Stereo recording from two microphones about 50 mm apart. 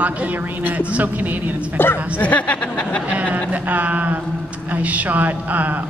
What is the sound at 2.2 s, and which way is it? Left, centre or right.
Speech, left.